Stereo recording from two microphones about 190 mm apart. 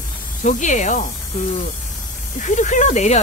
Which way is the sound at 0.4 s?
40° left (ahead or behind).